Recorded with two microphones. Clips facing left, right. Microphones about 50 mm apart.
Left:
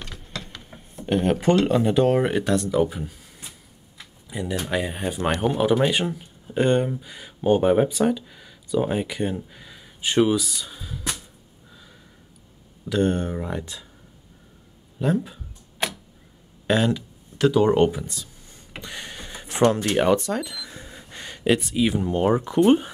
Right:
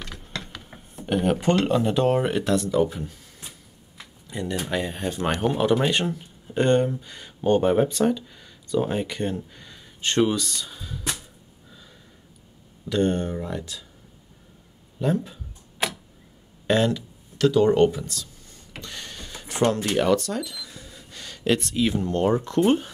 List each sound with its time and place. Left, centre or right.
0.1 s a sound: centre
1.0 s speech: centre
12.8 s speech: centre
13.4 s speech: left
15.0 s speech: centre
16.6 s speech: centre
17.4 s a sound: centre
20.0 s cash register: left
21.5 s speech: centre